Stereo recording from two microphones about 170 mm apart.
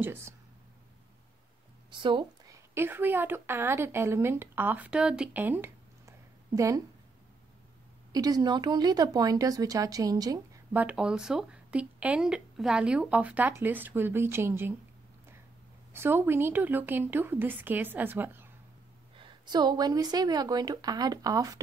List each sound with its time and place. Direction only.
0.0 s speech: 15° right (ahead or behind)
1.9 s a woman's voice: 30° right (ahead or behind)
8.1 s speech: 20° right (ahead or behind)
10.7 s speech: 10° right (ahead or behind)
15.9 s speech: 15° right (ahead or behind)
19.1 s speech: 25° right (ahead or behind)